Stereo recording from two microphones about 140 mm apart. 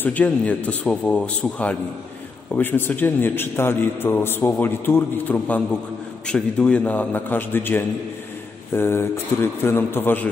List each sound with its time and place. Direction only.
0.0 s a man's voice: 10° left (ahead or behind)